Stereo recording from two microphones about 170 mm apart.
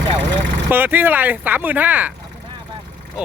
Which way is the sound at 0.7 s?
10° right (ahead or behind).